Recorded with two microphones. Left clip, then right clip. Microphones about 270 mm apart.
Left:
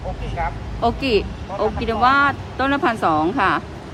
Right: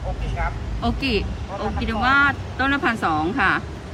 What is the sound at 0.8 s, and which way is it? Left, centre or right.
Speech, centre.